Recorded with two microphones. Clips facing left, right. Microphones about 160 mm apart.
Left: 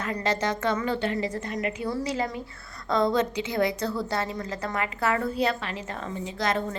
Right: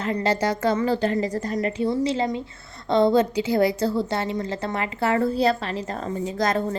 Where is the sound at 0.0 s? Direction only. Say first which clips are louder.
Right 4 dB; 30° right (ahead or behind).